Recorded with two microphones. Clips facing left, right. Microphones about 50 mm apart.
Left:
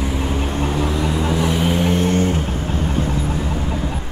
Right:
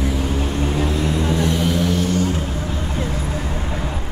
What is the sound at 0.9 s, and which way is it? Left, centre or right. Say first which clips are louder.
Vehicle: even; centre.